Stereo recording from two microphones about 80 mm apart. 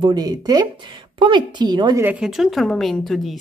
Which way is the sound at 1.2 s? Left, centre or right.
Right.